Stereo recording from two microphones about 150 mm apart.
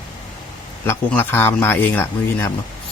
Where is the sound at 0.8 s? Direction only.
15° left (ahead or behind).